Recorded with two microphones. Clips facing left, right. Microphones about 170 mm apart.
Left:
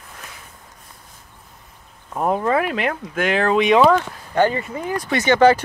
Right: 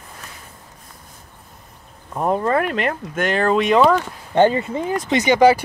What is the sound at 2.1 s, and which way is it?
Speech, 5° left (ahead or behind).